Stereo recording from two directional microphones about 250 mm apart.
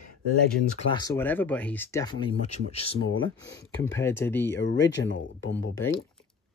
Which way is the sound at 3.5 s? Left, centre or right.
Centre.